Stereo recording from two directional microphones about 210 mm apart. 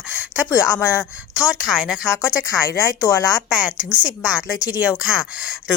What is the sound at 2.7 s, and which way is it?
Speech, 15° left (ahead or behind).